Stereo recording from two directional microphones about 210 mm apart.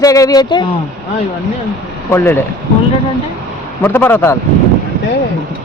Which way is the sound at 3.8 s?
10° left (ahead or behind).